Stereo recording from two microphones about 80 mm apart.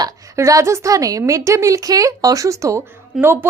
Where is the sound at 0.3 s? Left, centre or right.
Right.